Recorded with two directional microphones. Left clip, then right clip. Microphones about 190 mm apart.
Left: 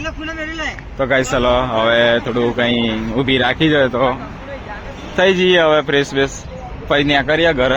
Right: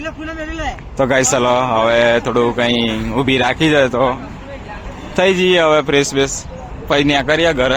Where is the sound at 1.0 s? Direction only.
30° right (ahead or behind).